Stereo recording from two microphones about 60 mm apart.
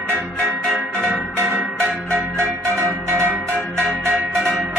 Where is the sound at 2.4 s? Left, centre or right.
Right.